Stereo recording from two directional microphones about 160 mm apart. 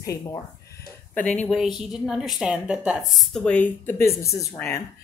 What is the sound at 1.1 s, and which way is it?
Speech, 10° left (ahead or behind).